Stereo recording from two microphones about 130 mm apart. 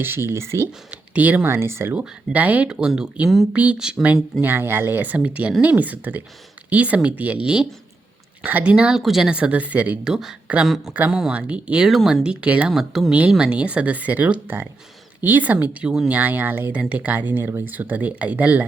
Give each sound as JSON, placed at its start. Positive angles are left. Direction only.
{"t": 0.0, "sound": "speech", "side_deg": -20}